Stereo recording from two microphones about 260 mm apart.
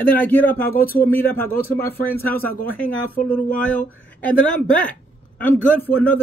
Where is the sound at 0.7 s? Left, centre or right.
Left.